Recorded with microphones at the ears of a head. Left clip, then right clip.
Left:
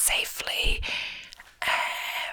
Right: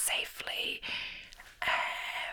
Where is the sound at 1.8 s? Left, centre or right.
Left.